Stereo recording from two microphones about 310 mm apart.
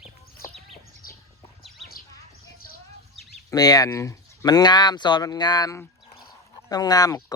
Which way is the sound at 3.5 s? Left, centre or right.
Centre.